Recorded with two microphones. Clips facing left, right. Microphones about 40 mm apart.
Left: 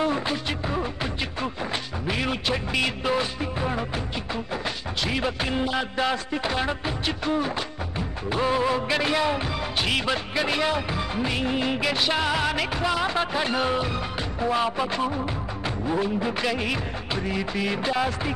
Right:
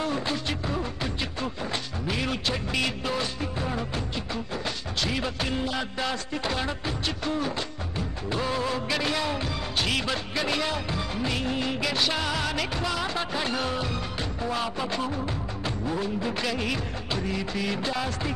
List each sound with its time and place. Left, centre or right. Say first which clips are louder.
0.0 s music: left 3 dB; centre
2.0 s music of bollywood: left 3 dB; centre
5.0 s music of bollywood: left 3 dB; centre